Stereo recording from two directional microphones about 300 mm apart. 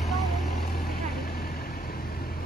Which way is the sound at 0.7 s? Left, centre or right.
Left.